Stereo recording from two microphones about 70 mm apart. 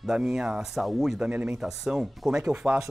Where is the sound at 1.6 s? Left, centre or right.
Centre.